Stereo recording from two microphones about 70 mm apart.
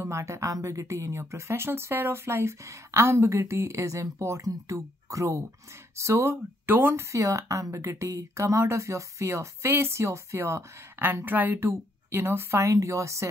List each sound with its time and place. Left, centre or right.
0.0 s speech: right
6.6 s a woman's voice: right